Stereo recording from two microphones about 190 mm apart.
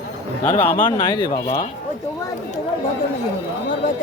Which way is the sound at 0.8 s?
25° left (ahead or behind).